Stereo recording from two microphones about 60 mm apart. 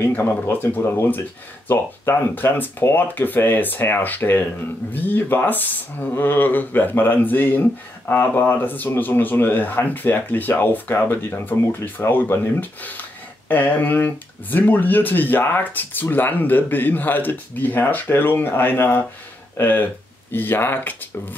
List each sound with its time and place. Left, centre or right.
0.0 s speech: left